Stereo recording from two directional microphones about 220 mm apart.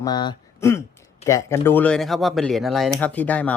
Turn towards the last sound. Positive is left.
turn(degrees=5)  # may be behind; listen again after turning